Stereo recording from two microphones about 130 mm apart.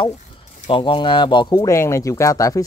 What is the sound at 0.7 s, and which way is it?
Speech, 45° left (ahead or behind).